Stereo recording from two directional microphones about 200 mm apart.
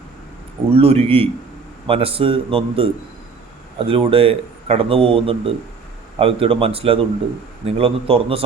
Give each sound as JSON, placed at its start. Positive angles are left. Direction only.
{"t": 0.7, "sound": "a man's voice", "side_deg": -30}